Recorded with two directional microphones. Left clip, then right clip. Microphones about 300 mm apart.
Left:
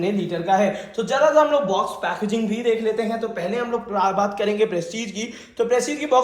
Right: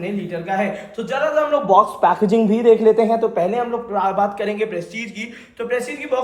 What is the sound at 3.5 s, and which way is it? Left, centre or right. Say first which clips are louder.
Speech: right 2 dB; centre.